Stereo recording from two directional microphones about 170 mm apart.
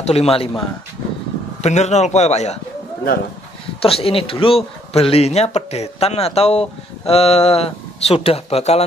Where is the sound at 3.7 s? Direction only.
35° left (ahead or behind).